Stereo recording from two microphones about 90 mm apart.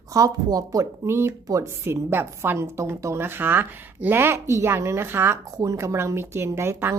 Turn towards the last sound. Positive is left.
turn(degrees=-25)  # may be behind; listen again after turning